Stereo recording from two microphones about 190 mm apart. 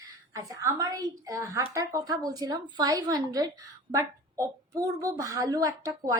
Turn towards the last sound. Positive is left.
turn(degrees=-15)  # may be behind; listen again after turning